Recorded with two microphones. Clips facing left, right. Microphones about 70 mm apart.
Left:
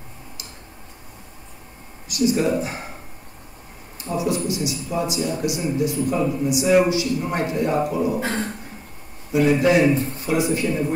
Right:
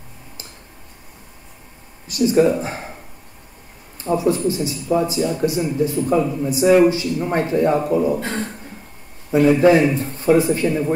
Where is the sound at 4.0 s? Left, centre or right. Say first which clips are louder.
Right 5 dB; right.